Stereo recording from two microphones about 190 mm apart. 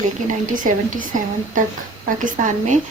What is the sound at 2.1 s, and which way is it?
Speech, 45° right (ahead or behind).